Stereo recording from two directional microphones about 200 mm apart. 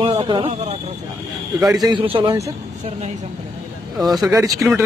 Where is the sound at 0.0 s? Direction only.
25° right (ahead or behind).